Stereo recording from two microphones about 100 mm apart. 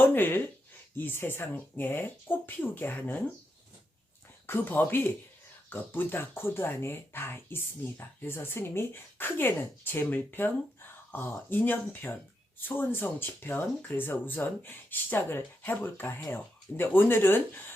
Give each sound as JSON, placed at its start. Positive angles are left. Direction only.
{"t": 0.0, "sound": "speech", "side_deg": 20}
{"t": 4.4, "sound": "speech", "side_deg": 20}